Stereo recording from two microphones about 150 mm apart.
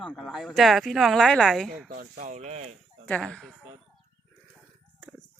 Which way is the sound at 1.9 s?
70° right (ahead or behind).